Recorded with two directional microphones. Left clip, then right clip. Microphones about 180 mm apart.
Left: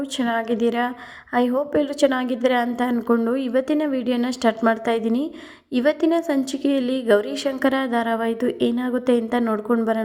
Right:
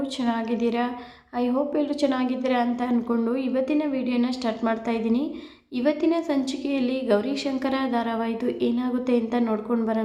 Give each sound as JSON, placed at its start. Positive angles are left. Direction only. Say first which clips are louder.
{"t": 0.2, "sound": "a woman's voice", "louder": "left 6 dB", "side_deg": 35}